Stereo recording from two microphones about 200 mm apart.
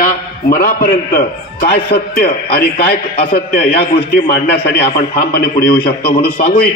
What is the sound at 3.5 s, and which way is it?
A man's voice, 50° left (ahead or behind).